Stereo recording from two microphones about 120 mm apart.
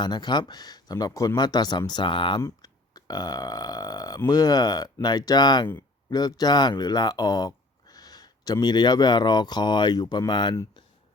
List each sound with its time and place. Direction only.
0.0 s speech: 35° left (ahead or behind)
2.4 s speech: 35° left (ahead or behind)